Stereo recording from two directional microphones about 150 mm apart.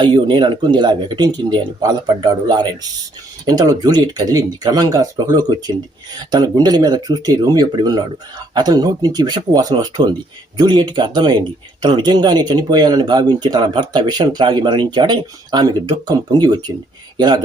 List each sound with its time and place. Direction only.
0.0 s speech: 30° right (ahead or behind)